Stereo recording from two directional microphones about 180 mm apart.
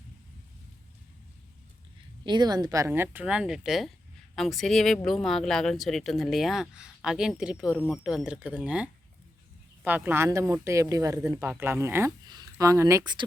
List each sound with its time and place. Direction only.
2.2 s speech: 25° right (ahead or behind)